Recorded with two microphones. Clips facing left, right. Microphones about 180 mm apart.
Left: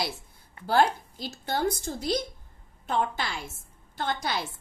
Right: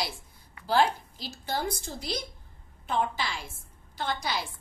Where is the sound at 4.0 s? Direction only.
50° left (ahead or behind).